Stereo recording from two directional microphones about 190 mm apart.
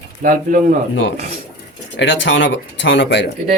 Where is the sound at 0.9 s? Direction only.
80° left.